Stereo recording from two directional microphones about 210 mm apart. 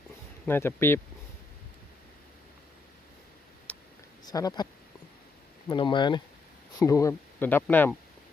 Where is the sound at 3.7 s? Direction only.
5° left (ahead or behind).